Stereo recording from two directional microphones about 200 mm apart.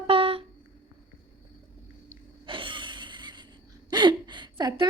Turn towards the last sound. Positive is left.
turn(degrees=-20)  # may be behind; listen again after turning